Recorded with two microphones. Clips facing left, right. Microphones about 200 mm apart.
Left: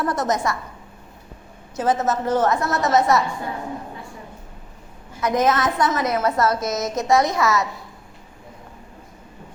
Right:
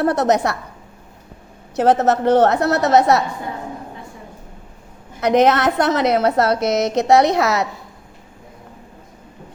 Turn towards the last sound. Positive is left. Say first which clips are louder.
# right 4 dB
turn(degrees=-65)  # may be behind; listen again after turning